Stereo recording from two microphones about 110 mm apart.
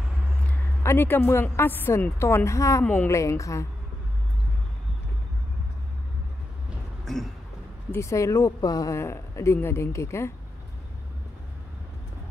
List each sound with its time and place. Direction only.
0.8 s speech: 20° left (ahead or behind)
2.8 s a woman's voice: 15° left (ahead or behind)
3.1 s speech: 30° left (ahead or behind)
7.1 s a sound: centre (ahead or behind)
7.9 s speech: 25° left (ahead or behind)